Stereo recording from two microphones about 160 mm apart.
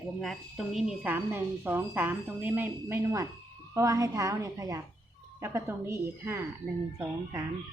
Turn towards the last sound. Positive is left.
turn(degrees=-20)  # may be behind; listen again after turning